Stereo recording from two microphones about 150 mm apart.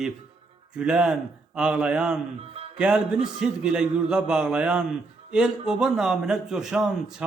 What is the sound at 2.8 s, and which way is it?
A man's voice, 5° right (ahead or behind).